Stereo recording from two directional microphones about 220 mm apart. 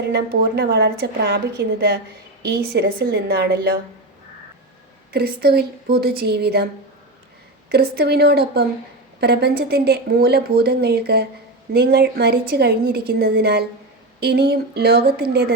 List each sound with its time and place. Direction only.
0.1 s speech: 45° right (ahead or behind)
5.1 s speech: 45° right (ahead or behind)
7.7 s speech: 45° right (ahead or behind)